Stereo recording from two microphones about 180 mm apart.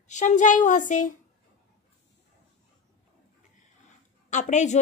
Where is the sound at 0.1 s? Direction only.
40° left (ahead or behind).